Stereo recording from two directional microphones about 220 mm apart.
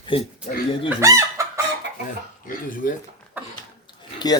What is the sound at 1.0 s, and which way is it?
Chicken, 15° right (ahead or behind).